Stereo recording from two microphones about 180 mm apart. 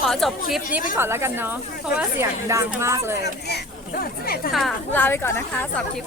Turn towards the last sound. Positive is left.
turn(degrees=10)  # may be behind; listen again after turning